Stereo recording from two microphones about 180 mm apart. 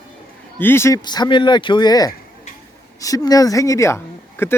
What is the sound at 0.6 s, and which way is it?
Speech, 15° left (ahead or behind).